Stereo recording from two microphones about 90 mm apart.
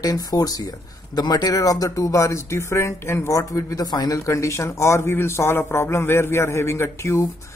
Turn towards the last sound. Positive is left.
turn(degrees=35)  # may be behind; listen again after turning